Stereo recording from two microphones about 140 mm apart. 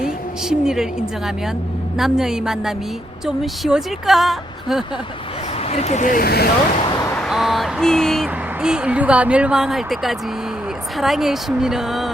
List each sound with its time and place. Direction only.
0.0 s a woman's voice: 5° right (ahead or behind)
5.6 s speech: 50° left (ahead or behind); by 6.5 s 90° left
7.2 s speech: centre (ahead or behind)